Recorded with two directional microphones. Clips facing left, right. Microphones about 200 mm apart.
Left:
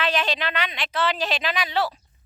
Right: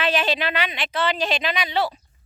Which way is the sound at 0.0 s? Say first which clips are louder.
Right 2 dB; 5° right (ahead or behind).